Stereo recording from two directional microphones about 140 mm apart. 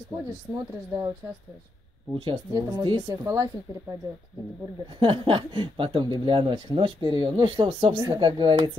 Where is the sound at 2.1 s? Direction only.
35° right (ahead or behind).